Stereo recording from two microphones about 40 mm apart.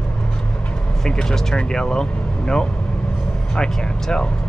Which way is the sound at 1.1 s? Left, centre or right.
Centre.